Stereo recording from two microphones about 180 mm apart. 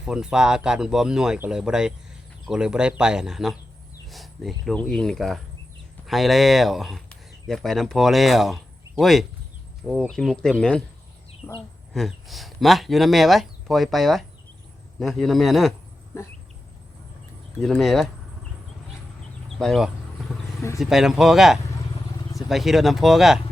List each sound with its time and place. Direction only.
0.0 s speech: 5° right (ahead or behind); by 11.6 s 15° left (ahead or behind)
11.9 s speech: centre (ahead or behind)
17.6 s speech: centre (ahead or behind)
19.5 s speech: centre (ahead or behind)